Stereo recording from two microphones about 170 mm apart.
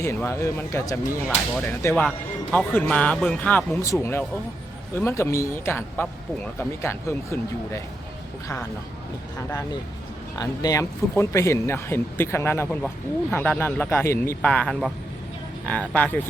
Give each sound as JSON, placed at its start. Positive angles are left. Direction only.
{"t": 0.0, "sound": "speech", "side_deg": 15}
{"t": 10.3, "sound": "speech", "side_deg": 20}